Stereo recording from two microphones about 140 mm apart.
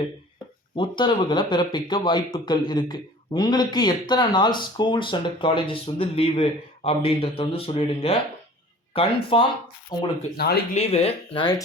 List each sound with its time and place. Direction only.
0.8 s speech: 35° left (ahead or behind)
10.8 s speech: 45° left (ahead or behind)